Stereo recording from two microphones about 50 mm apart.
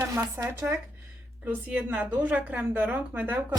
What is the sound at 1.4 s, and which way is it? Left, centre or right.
A woman's voice, right.